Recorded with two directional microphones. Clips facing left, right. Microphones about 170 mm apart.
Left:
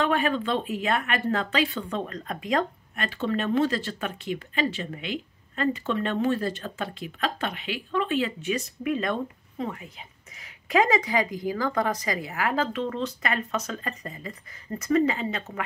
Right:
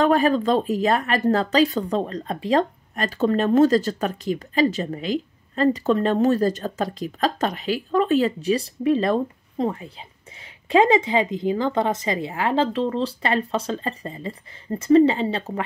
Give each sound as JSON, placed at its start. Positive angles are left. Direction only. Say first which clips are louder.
{"t": 0.0, "sound": "speech", "louder": "right 7 dB", "side_deg": -40}